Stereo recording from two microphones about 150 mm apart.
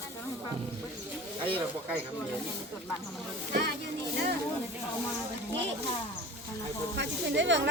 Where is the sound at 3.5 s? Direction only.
90° right.